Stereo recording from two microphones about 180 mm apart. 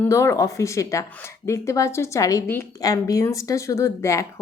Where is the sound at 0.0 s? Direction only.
15° left (ahead or behind).